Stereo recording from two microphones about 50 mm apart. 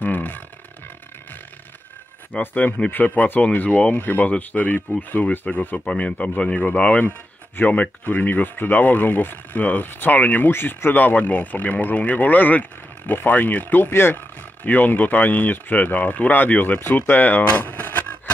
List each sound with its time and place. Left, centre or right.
0.0 s a sound: left
2.5 s speech: left
5.2 s speech: left
10.5 s speech: left
14.6 s speech: left